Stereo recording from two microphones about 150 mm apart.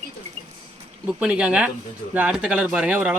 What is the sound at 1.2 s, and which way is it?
Speech, 5° right (ahead or behind).